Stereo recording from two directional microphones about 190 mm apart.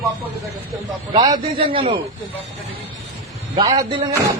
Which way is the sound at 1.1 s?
25° right (ahead or behind).